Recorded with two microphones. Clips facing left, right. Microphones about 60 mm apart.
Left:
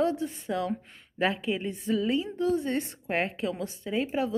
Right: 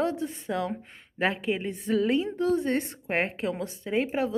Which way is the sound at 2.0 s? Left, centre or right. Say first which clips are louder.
Right 4 dB; right.